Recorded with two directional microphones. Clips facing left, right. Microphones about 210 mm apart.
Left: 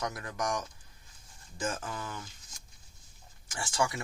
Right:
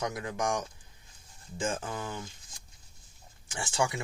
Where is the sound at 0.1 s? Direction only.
20° right (ahead or behind).